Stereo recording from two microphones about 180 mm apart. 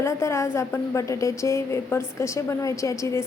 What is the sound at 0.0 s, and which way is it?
A woman's voice, 15° left (ahead or behind).